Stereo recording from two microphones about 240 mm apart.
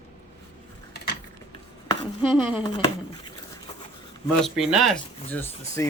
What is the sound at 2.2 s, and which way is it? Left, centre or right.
Speech, centre.